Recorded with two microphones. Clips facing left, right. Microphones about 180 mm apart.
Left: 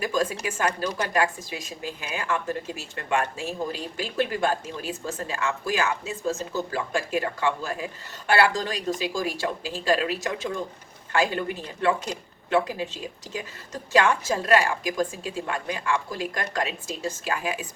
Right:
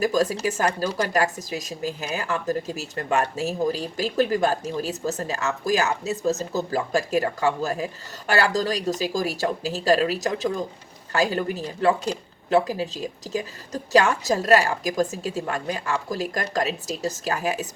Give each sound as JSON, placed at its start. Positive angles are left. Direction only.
{"t": 0.0, "sound": "a woman's voice", "side_deg": -40}